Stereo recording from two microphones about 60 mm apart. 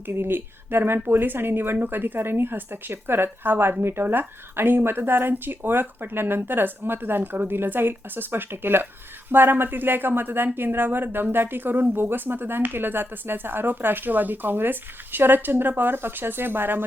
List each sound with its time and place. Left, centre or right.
0.2 s a woman's voice: right